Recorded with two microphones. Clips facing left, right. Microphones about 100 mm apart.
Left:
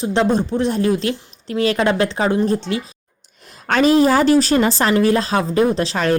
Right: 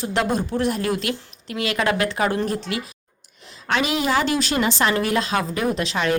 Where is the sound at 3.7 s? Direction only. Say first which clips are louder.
Left 8 dB; 40° left (ahead or behind).